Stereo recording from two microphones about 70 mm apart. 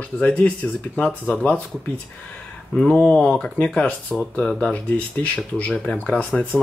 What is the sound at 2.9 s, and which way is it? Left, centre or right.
Speech, centre.